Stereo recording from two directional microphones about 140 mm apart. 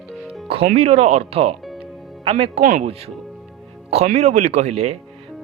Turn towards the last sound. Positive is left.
turn(degrees=-50)  # may be behind; listen again after turning